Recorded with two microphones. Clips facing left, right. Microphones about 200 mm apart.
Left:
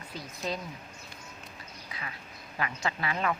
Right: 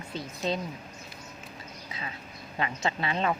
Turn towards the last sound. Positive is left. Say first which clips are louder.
# right 2 dB
turn(degrees=-25)  # may be behind; listen again after turning